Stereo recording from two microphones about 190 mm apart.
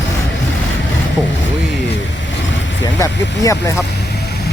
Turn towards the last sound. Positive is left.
turn(degrees=15)  # may be behind; listen again after turning